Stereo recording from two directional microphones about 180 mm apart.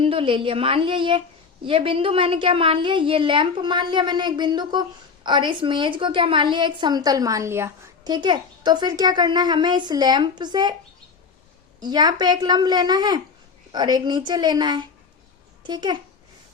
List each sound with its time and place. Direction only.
0.0 s a woman's voice: 30° right (ahead or behind)
11.8 s a woman's voice: 25° right (ahead or behind)